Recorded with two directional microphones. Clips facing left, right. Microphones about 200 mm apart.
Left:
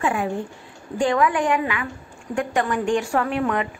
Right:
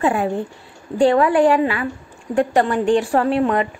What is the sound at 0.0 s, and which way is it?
A woman's voice, 35° right (ahead or behind).